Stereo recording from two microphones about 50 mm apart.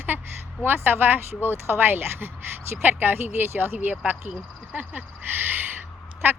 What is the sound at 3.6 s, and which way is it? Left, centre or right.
Speech, right.